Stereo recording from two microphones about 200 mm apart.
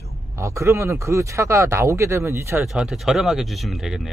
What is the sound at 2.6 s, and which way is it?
Speech, centre (ahead or behind).